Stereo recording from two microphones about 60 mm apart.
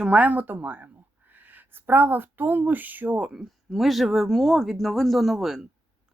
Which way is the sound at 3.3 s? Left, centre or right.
Centre.